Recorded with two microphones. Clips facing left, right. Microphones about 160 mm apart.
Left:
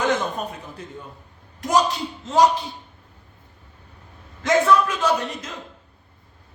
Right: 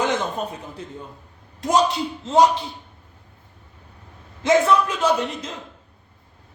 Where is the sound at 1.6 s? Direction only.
25° right (ahead or behind).